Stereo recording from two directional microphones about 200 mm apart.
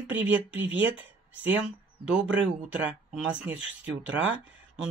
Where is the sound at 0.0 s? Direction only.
10° right (ahead or behind).